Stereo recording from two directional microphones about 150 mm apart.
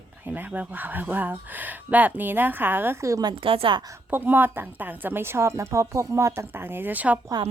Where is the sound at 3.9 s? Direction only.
15° right (ahead or behind).